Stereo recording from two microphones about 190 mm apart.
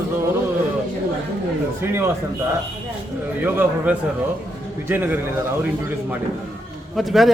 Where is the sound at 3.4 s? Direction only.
10° right (ahead or behind).